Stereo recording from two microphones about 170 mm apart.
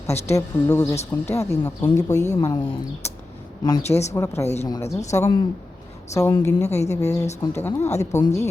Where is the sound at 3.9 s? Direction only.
40° left (ahead or behind).